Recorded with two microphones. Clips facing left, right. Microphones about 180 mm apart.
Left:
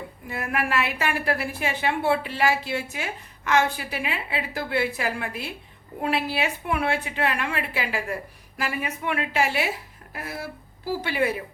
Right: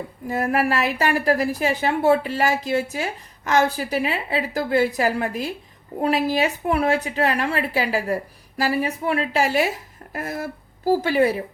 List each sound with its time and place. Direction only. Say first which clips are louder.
0.3 s a woman's voice: right 7 dB; 40° right (ahead or behind)